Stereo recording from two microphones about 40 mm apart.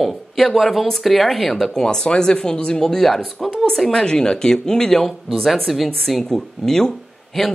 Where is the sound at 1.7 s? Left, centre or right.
Centre.